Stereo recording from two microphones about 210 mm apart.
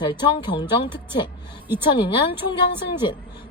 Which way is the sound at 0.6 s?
10° right (ahead or behind).